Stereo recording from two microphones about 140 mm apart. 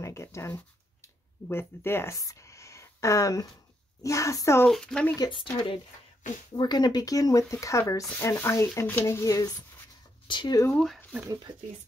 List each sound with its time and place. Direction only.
0.0 s speech: 20° left (ahead or behind)
1.0 s a sound: 20° left (ahead or behind)
4.0 s speech: 20° left (ahead or behind)
4.6 s speech: 5° left (ahead or behind)
5.1 s speech: 30° left (ahead or behind)
10.2 s speech: 35° left (ahead or behind)
10.7 s speech: 5° left (ahead or behind)
11.2 s speech: 30° right (ahead or behind)